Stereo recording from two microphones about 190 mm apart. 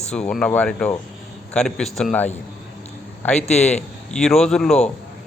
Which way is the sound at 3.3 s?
35° left (ahead or behind).